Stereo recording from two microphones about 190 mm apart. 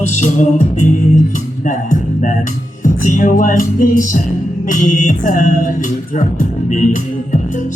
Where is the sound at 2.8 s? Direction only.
40° left (ahead or behind).